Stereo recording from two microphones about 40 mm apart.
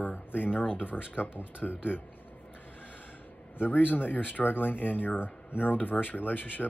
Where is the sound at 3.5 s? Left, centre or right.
Left.